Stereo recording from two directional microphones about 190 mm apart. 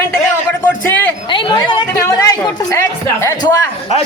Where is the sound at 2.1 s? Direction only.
15° left (ahead or behind).